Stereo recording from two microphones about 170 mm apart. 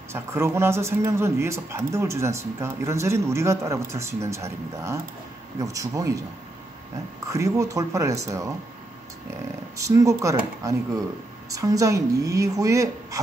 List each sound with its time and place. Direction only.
0.1 s a woman's voice: 15° right (ahead or behind)
7.2 s speech: 20° right (ahead or behind)
9.8 s a woman's voice: 20° right (ahead or behind)
11.5 s a woman's voice: 20° right (ahead or behind)